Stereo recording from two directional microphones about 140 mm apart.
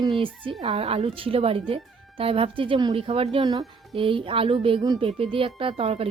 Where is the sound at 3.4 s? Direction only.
30° right (ahead or behind).